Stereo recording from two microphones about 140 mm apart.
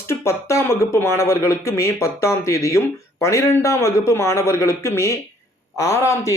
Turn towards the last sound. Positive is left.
turn(degrees=20)  # may be behind; listen again after turning